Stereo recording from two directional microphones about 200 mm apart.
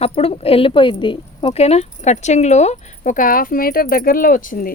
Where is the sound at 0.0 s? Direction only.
30° left (ahead or behind).